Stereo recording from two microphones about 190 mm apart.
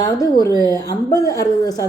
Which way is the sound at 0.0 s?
20° left (ahead or behind).